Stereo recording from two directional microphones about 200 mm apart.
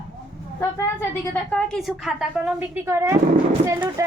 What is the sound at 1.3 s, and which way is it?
A woman's voice, 5° left (ahead or behind).